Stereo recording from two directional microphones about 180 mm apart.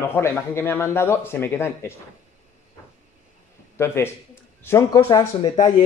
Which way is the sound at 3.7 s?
15° left (ahead or behind).